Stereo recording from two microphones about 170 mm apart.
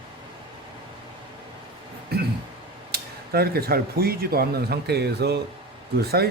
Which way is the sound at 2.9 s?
65° right (ahead or behind).